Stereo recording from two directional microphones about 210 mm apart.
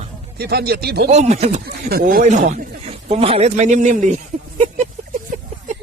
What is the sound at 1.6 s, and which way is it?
Speech, 45° right (ahead or behind).